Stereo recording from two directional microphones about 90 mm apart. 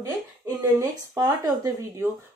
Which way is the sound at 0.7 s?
40° right (ahead or behind).